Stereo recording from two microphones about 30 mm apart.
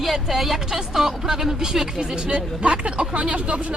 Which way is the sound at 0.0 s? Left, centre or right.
Centre.